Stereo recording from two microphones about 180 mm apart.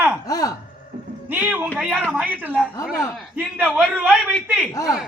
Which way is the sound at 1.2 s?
10° right (ahead or behind).